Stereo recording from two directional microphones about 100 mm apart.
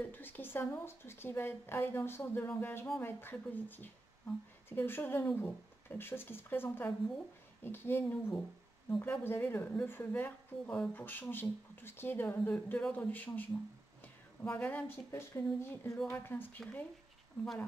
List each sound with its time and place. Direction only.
0.0 s a woman's voice: 20° left (ahead or behind)